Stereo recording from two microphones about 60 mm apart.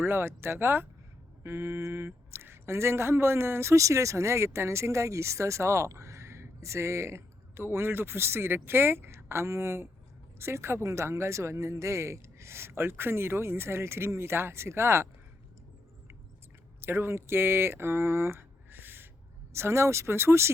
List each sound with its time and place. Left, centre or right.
0.0 s speech: right
16.8 s speech: right
19.5 s speech: right